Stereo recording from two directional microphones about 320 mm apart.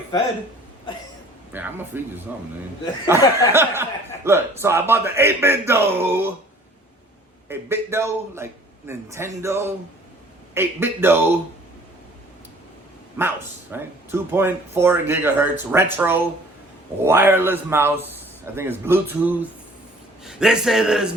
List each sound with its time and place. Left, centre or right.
1.5 s a man's voice: centre
7.4 s speech: centre
13.1 s a man's voice: centre